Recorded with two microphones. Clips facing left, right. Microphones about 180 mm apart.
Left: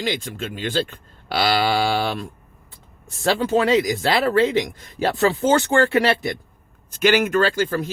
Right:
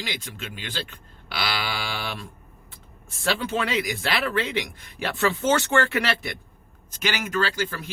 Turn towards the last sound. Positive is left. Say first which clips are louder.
# left 7 dB
turn(degrees=45)  # may be behind; listen again after turning